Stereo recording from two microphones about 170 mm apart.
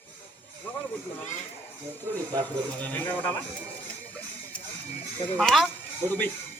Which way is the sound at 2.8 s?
10° left (ahead or behind).